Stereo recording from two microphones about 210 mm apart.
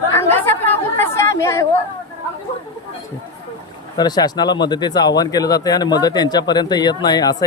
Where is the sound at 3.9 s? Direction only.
20° left (ahead or behind).